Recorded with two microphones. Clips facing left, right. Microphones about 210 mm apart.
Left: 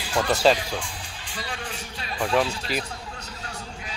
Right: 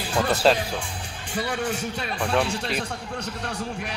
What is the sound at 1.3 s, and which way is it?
Speech, 45° right (ahead or behind).